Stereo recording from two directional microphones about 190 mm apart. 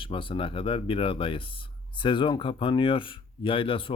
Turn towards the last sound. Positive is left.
turn(degrees=25)  # may be behind; listen again after turning